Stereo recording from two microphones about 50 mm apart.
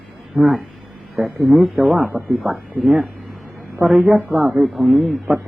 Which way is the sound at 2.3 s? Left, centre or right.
Centre.